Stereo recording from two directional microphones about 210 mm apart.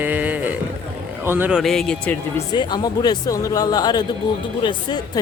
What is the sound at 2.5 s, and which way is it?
Speech, 20° left (ahead or behind).